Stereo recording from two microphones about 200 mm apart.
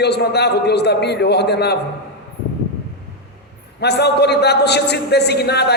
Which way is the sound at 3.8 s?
55° left (ahead or behind).